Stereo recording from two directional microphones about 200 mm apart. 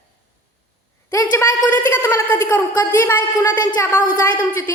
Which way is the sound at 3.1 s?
20° left (ahead or behind).